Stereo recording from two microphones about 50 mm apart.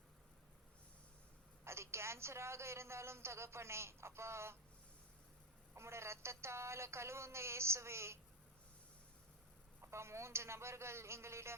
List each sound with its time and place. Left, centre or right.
1.6 s a woman's voice: right
5.7 s a woman's voice: right
9.8 s a woman's voice: right